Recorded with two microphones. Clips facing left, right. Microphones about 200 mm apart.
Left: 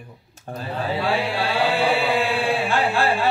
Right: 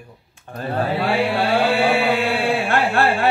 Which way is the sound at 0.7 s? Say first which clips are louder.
Right 3 dB; 60° right (ahead or behind).